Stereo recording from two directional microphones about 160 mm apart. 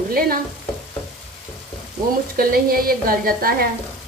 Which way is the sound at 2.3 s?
65° right (ahead or behind).